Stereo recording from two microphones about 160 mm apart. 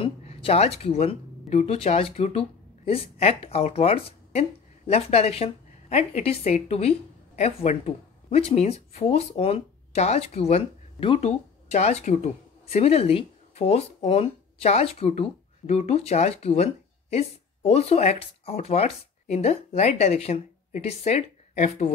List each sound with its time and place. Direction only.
0.0 s speech: 35° left (ahead or behind)